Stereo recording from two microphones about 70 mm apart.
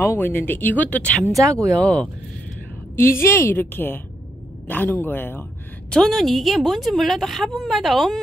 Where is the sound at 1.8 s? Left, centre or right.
Centre.